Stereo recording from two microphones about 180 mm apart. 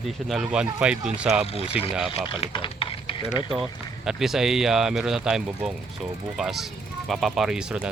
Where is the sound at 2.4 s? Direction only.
30° left (ahead or behind).